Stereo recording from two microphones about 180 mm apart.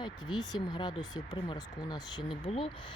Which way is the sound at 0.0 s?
25° left (ahead or behind).